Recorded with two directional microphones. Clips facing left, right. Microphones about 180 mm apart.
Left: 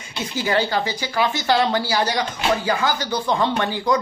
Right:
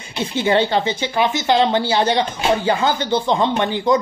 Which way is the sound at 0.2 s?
25° right (ahead or behind).